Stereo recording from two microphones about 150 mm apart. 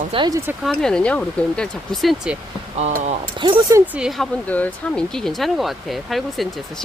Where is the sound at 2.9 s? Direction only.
50° right (ahead or behind).